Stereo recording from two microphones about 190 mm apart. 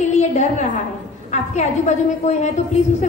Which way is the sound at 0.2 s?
40° left (ahead or behind).